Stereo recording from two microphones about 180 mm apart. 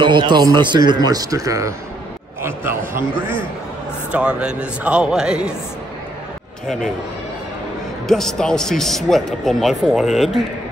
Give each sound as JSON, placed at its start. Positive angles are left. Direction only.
{"t": 0.0, "sound": "a man's voice", "side_deg": -25}
{"t": 4.1, "sound": "a man's voice", "side_deg": -5}
{"t": 8.1, "sound": "a man's voice", "side_deg": 0}